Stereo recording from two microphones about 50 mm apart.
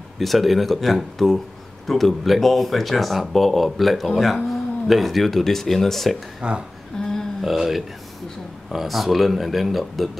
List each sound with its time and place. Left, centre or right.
0.2 s speech: centre
6.4 s speech: right
7.0 s burping: centre
7.4 s speech: centre